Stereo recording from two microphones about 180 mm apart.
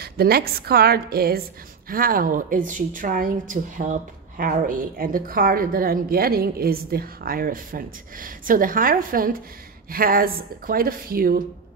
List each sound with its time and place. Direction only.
0.0 s a woman's voice: 60° right (ahead or behind)